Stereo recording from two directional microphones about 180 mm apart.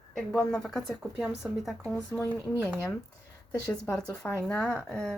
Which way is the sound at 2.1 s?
20° left (ahead or behind).